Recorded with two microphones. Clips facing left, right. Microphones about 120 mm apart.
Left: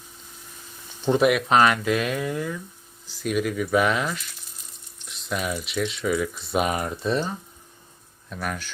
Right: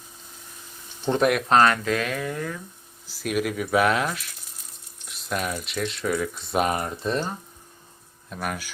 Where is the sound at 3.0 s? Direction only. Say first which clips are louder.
Left 1 dB; 5° right (ahead or behind).